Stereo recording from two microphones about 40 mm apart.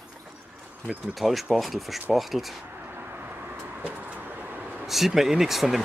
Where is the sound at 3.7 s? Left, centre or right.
Right.